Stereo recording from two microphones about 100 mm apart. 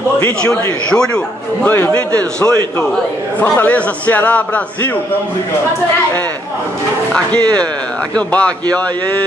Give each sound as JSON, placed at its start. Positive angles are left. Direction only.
{"t": 0.4, "sound": "a man's voice", "side_deg": 10}
{"t": 1.7, "sound": "a man's voice", "side_deg": 20}
{"t": 3.4, "sound": "a man's voice", "side_deg": 20}
{"t": 8.3, "sound": "a man's voice", "side_deg": 15}